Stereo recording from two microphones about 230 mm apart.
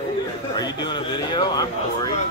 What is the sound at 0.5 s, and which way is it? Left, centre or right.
Speech, centre.